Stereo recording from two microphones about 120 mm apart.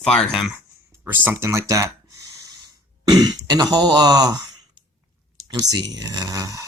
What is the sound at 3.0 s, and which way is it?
Speech, 35° right (ahead or behind).